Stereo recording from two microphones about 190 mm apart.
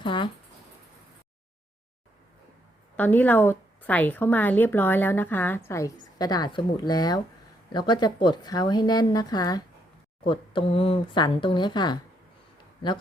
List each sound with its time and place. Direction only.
0.0 s speech: 25° left (ahead or behind)
2.9 s a woman's voice: 10° left (ahead or behind); by 11.9 s 25° left (ahead or behind)